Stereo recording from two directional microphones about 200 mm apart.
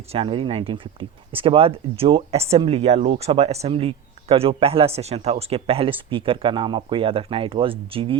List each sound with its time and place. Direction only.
0.1 s speech: 25° right (ahead or behind)